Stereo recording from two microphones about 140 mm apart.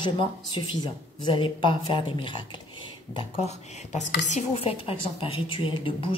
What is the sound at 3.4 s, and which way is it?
A woman's voice, 55° left (ahead or behind).